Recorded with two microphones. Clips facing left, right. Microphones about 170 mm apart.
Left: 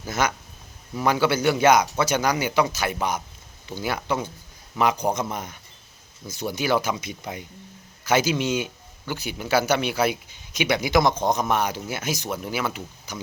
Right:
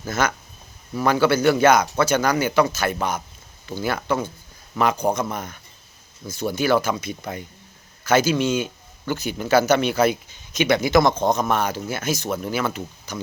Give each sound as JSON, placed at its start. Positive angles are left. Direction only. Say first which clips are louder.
{"t": 0.0, "sound": "speech", "louder": "right 2 dB", "side_deg": 15}